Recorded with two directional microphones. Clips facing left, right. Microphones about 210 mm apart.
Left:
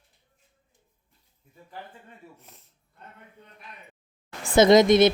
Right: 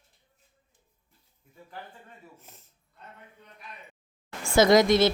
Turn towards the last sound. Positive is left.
turn(degrees=20)  # may be behind; listen again after turning